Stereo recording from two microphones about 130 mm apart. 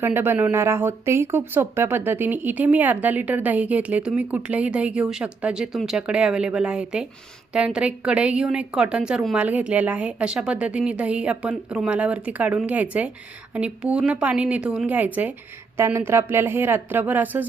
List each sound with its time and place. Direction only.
0.0 s speech: 15° right (ahead or behind)